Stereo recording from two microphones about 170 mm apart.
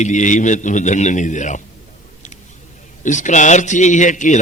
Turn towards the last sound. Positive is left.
turn(degrees=45)  # may be behind; listen again after turning